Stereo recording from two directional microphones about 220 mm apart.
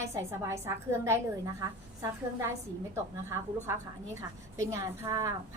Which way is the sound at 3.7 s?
15° right (ahead or behind).